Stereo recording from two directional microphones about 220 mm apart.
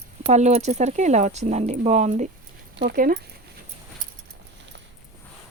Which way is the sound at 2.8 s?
45° right (ahead or behind).